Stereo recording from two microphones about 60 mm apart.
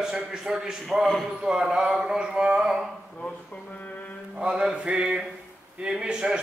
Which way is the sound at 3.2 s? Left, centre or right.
Centre.